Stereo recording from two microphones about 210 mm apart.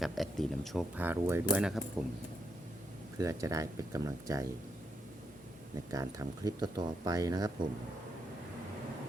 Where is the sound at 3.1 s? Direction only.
15° right (ahead or behind).